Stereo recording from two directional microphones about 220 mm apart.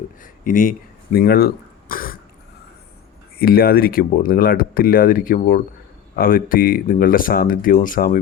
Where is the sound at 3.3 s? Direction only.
45° left (ahead or behind).